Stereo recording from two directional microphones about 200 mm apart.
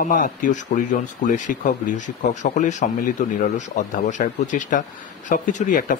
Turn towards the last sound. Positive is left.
turn(degrees=40)  # may be behind; listen again after turning